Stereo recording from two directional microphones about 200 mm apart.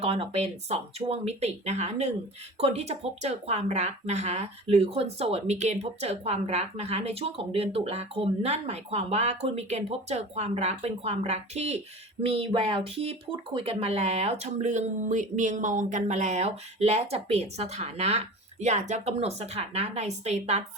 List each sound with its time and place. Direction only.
0.0 s speech: 30° right (ahead or behind)